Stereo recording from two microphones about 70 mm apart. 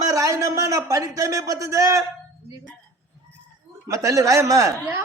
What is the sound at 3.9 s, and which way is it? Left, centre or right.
Speech, right.